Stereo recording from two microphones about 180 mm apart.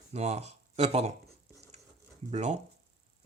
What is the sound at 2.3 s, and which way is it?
Speech, 40° right (ahead or behind).